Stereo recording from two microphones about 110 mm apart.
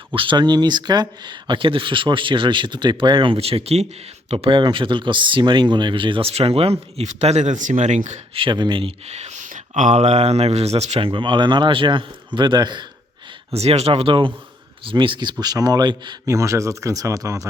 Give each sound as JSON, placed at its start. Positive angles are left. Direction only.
{"t": 0.1, "sound": "speech", "side_deg": -50}
{"t": 8.4, "sound": "speech", "side_deg": -45}
{"t": 9.0, "sound": "speech", "side_deg": -85}
{"t": 11.1, "sound": "speech", "side_deg": -50}
{"t": 13.5, "sound": "speech", "side_deg": -70}
{"t": 16.2, "sound": "speech", "side_deg": -25}